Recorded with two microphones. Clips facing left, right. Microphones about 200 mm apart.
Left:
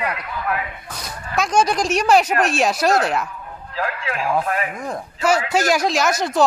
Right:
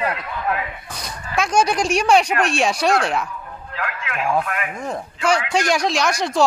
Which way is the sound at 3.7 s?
35° left (ahead or behind).